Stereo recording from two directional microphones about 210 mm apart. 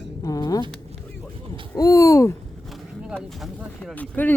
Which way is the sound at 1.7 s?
15° left (ahead or behind).